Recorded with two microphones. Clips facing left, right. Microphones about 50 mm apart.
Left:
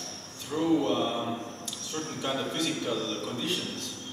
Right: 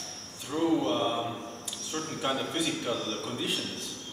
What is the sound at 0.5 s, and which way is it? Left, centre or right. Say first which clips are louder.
A man's voice: left 1 dB; centre.